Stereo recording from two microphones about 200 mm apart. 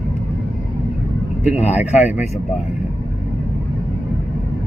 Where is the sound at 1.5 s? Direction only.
35° left (ahead or behind).